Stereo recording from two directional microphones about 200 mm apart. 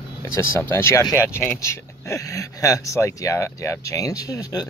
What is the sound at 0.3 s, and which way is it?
Speech, 15° left (ahead or behind).